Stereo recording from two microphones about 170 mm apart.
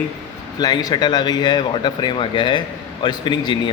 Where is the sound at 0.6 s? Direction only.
25° left (ahead or behind).